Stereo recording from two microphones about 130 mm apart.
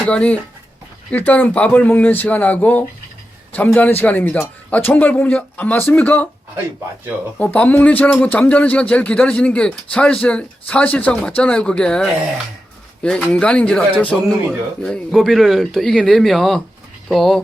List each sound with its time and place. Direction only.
0.1 s speech: 10° left (ahead or behind)
7.3 s speech: 10° left (ahead or behind)